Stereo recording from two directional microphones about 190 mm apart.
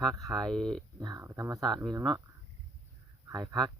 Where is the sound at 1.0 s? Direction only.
15° right (ahead or behind).